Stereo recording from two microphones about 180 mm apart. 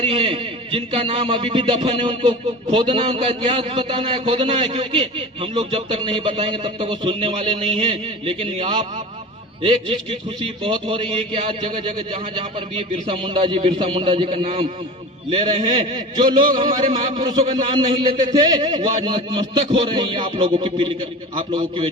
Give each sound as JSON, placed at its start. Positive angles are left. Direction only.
{"t": 0.0, "sound": "a man's voice", "side_deg": -30}